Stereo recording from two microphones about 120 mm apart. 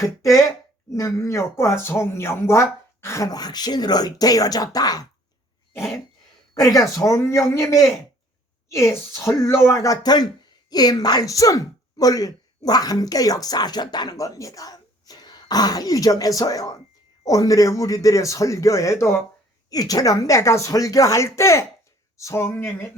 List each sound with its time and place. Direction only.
0.0 s speech: 25° left (ahead or behind)
6.5 s speech: 30° left (ahead or behind)
8.7 s speech: 25° left (ahead or behind)